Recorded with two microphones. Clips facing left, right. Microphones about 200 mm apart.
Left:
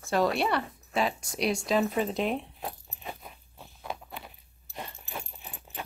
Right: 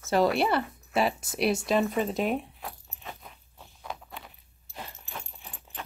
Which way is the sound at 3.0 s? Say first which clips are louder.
Left 2 dB; 10° left (ahead or behind).